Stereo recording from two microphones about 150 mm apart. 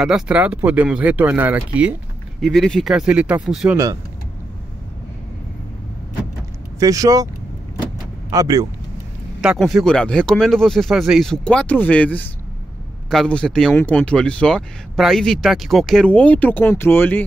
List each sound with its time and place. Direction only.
0.0 s speech: 5° right (ahead or behind)
2.4 s speech: 5° left (ahead or behind)
3.7 s speech: 20° right (ahead or behind)
6.8 s speech: 25° right (ahead or behind)
8.3 s speech: 25° right (ahead or behind)
9.4 s speech: centre (ahead or behind); by 17.2 s 15° left (ahead or behind)